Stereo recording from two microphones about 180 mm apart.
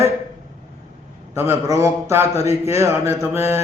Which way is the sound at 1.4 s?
15° right (ahead or behind).